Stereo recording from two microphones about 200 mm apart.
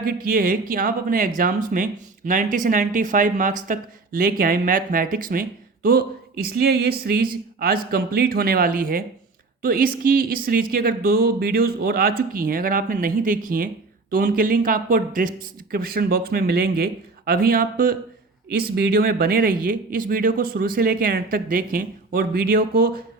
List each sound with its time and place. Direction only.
0.0 s speech: 45° right (ahead or behind)
18.4 s speech: 55° right (ahead or behind)